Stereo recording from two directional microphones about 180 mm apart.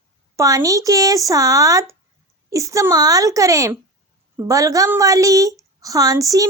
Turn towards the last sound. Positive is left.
turn(degrees=-20)  # may be behind; listen again after turning